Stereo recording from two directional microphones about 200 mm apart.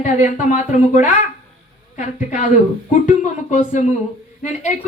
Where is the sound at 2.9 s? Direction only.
40° left (ahead or behind).